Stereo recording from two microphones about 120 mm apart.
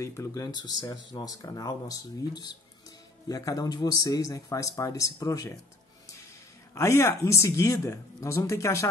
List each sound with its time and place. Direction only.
0.0 s speech: 25° left (ahead or behind)
6.7 s speech: 25° left (ahead or behind)